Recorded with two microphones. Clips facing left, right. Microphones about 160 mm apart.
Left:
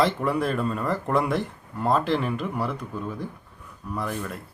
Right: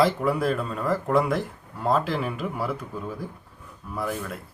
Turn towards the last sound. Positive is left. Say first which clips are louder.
# even
turn(degrees=-5)  # may be behind; listen again after turning